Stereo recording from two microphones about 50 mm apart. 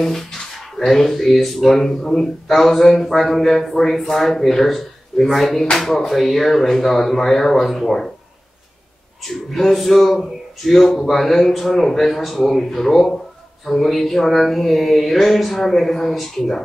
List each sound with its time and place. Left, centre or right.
0.7 s a man's voice: centre
9.3 s speech: centre